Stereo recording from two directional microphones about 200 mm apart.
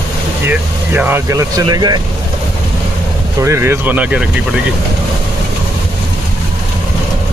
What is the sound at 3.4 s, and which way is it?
Speech, 15° right (ahead or behind).